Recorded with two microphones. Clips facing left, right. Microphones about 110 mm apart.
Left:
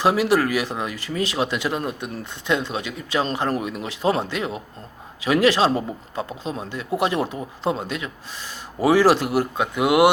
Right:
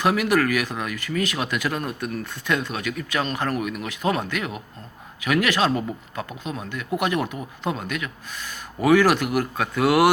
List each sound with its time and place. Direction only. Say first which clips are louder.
0.0 s speech: left 2 dB; 30° left (ahead or behind)